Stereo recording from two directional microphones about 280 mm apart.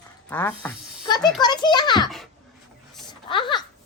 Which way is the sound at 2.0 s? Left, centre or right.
Centre.